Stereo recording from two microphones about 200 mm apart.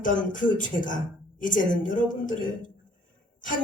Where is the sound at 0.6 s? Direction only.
40° left (ahead or behind).